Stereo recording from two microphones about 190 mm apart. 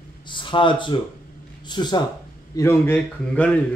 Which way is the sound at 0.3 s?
25° left (ahead or behind).